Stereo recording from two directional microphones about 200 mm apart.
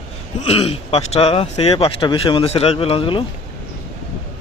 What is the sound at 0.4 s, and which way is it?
Speech, 30° left (ahead or behind).